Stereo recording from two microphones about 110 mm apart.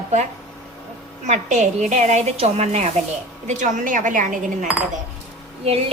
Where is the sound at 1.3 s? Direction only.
90° right.